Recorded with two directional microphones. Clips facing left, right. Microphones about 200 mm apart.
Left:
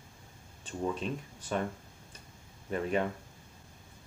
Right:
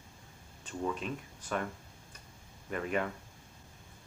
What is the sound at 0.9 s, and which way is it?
Speech, 30° left (ahead or behind).